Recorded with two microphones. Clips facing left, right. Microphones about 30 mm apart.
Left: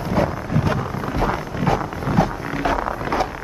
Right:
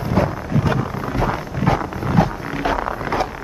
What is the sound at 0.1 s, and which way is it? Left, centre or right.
Wind noise, centre.